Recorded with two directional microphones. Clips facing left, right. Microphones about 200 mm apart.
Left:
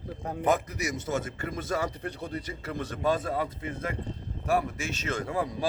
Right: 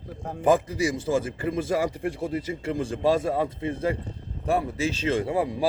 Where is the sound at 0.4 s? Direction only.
30° right (ahead or behind).